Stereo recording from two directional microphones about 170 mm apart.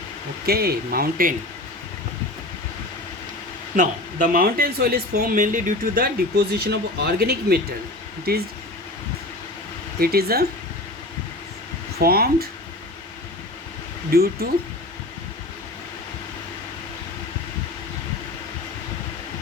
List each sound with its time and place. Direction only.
0.4 s speech: 65° right (ahead or behind)
3.8 s speech: 55° right (ahead or behind)
10.0 s speech: 65° right (ahead or behind)
11.9 s speech: 65° right (ahead or behind)
14.1 s speech: 65° right (ahead or behind)